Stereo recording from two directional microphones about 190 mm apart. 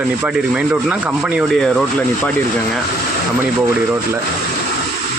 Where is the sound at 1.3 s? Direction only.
5° left (ahead or behind).